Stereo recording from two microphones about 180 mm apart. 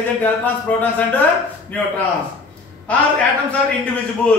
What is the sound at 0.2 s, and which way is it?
Speech, 10° left (ahead or behind).